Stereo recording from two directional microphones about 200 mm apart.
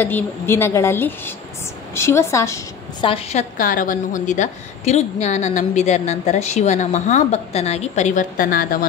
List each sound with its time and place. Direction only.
0.0 s a woman's voice: 10° left (ahead or behind)
3.1 s a woman's voice: 30° left (ahead or behind)